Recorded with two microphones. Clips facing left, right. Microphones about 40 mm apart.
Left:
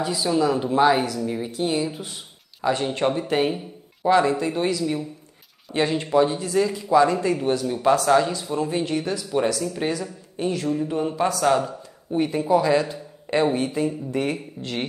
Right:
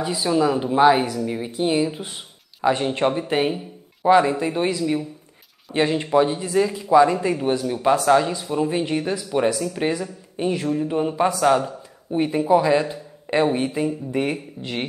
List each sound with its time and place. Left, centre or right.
0.0 s a man's voice: centre